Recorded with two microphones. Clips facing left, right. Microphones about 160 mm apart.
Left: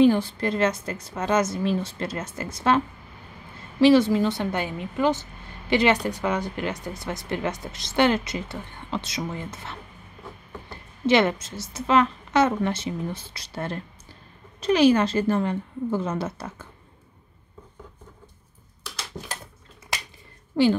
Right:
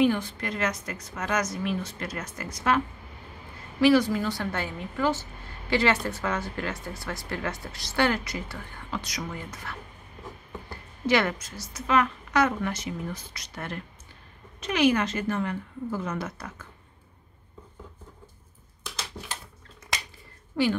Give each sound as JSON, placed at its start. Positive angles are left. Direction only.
{"t": 0.0, "sound": "speech", "side_deg": 30}
{"t": 3.8, "sound": "a woman's voice", "side_deg": 25}
{"t": 20.5, "sound": "a woman's voice", "side_deg": 30}